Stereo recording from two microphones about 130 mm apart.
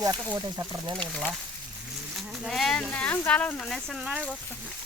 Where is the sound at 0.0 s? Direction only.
30° right (ahead or behind).